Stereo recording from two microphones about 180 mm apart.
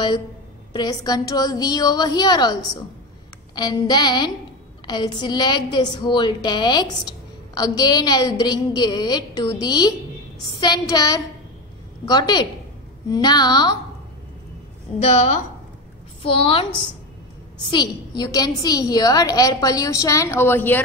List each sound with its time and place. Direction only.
0.7 s a woman's voice: 20° left (ahead or behind)
15.0 s a woman's voice: 40° left (ahead or behind)
17.6 s a woman's voice: 25° left (ahead or behind)